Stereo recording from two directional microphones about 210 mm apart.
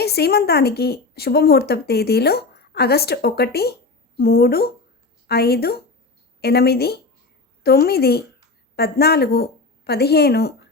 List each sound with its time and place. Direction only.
0.0 s a woman's voice: 50° left (ahead or behind)